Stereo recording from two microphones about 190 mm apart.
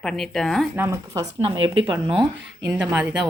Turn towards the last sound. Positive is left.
turn(degrees=-5)  # may be behind; listen again after turning